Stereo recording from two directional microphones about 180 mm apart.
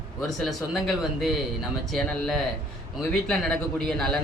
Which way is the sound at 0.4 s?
Centre (ahead or behind).